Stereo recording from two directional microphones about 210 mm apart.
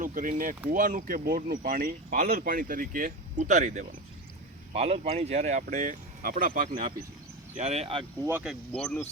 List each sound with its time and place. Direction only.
0.0 s speech: 40° right (ahead or behind)
8.3 s speech: 5° right (ahead or behind)
8.7 s speech: 5° left (ahead or behind)